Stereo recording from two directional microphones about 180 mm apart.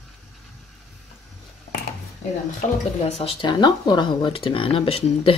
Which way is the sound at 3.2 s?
30° left (ahead or behind).